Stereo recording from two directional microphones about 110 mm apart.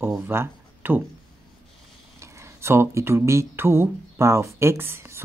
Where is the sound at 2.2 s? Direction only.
25° right (ahead or behind).